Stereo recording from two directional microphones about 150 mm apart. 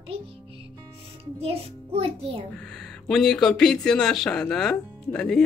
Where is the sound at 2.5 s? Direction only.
5° left (ahead or behind).